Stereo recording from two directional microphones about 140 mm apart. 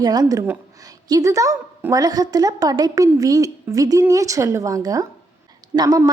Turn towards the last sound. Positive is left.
turn(degrees=-30)  # may be behind; listen again after turning